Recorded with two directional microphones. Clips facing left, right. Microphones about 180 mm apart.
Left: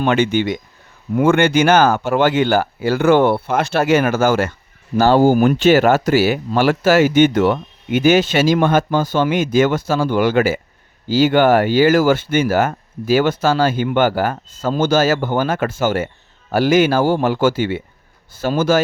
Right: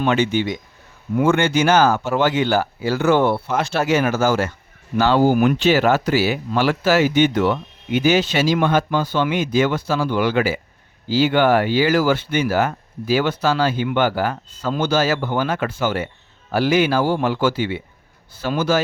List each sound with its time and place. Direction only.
0.0 s speech: 55° left (ahead or behind)
4.9 s speech: 45° left (ahead or behind)